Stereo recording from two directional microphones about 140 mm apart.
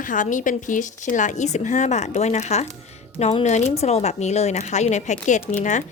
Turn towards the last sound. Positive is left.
turn(degrees=60)  # may be behind; listen again after turning